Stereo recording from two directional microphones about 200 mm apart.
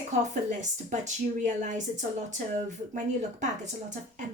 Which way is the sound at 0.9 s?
35° right (ahead or behind).